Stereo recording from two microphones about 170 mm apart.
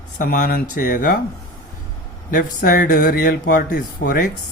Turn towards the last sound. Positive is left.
turn(degrees=60)  # may be behind; listen again after turning